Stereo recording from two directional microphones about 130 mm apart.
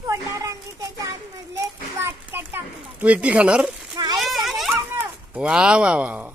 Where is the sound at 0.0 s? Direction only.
25° right (ahead or behind).